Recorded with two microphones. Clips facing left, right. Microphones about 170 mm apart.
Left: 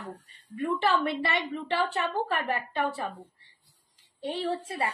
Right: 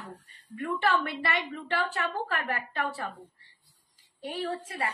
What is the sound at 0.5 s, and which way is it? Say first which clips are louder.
A woman's voice: left 2 dB; 25° left (ahead or behind).